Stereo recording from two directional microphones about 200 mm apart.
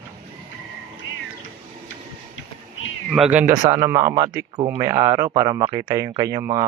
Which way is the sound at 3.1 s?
5° right (ahead or behind).